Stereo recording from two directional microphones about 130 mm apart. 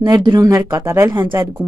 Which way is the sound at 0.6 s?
20° right (ahead or behind).